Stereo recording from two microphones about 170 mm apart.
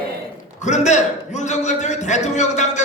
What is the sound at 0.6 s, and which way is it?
A man's voice, 45° left (ahead or behind).